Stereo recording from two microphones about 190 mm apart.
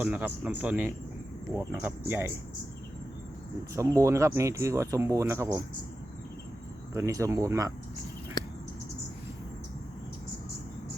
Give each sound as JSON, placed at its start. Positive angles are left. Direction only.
{"t": 0.0, "sound": "speech", "side_deg": -10}
{"t": 3.8, "sound": "speech", "side_deg": -15}
{"t": 6.9, "sound": "speech", "side_deg": -15}